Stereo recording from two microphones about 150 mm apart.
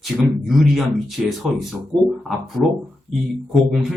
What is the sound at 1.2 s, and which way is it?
Speech, 5° right (ahead or behind).